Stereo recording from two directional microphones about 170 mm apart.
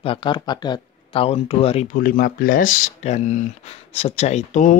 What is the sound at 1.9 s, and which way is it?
Speech, 55° left (ahead or behind).